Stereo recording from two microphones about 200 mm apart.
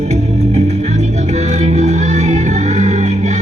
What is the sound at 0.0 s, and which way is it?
Music, 35° right (ahead or behind).